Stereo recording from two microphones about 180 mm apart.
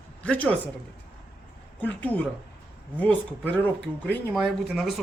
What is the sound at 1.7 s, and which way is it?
Speech, 10° left (ahead or behind).